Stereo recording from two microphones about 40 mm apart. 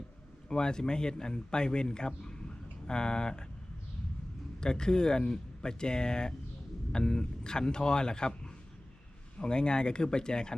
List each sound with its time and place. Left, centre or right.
0.4 s speech: centre
4.6 s speech: centre
9.4 s speech: left